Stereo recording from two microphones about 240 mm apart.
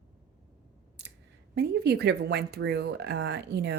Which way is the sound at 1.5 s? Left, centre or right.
Right.